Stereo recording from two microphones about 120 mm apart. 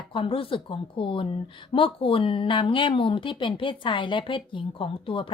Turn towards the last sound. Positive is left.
turn(degrees=45)  # may be behind; listen again after turning